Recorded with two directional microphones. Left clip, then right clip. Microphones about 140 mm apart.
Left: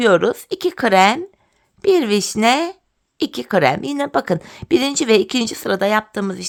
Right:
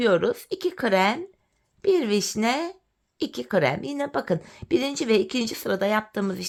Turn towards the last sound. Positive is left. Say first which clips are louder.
# left 6 dB
turn(degrees=20)  # may be behind; listen again after turning